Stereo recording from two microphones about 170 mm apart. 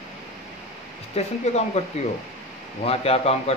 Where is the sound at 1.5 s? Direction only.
40° left (ahead or behind).